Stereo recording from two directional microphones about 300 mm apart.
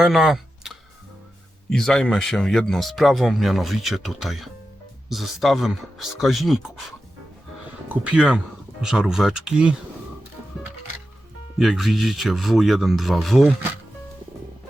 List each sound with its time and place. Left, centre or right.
0.0 s a sound: centre
1.7 s speech: centre
7.9 s speech: centre
11.5 s speech: centre